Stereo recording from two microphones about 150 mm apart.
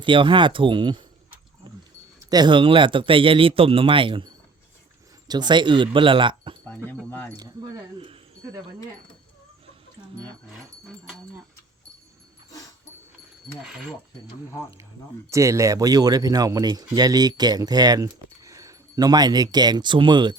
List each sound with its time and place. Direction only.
0.0 s speech: 35° right (ahead or behind)
1.6 s a sound: 30° right (ahead or behind)
2.1 s speech: 25° right (ahead or behind)
5.3 s speech: 30° right (ahead or behind)
7.0 s speech: 10° left (ahead or behind)
7.3 s speech: 25° right (ahead or behind)
13.6 s speech: 5° right (ahead or behind)
15.3 s speech: 20° right (ahead or behind)